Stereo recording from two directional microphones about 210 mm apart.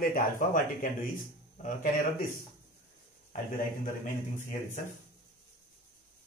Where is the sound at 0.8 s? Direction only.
40° left (ahead or behind).